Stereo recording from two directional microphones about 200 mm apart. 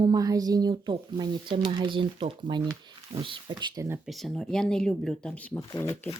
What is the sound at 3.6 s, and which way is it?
Speech, 20° right (ahead or behind).